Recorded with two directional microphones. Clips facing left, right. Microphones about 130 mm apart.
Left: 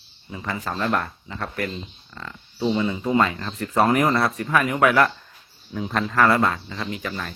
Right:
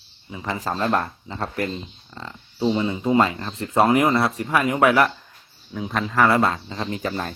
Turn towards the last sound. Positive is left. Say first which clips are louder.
# right 3 dB
turn(degrees=-35)  # may be behind; listen again after turning